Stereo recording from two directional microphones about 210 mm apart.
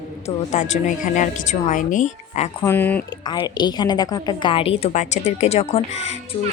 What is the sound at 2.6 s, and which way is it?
Speech, 10° left (ahead or behind).